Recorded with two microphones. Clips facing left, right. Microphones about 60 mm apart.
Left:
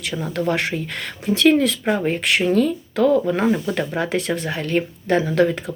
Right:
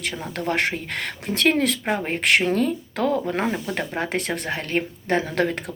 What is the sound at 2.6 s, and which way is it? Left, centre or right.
Speech, right.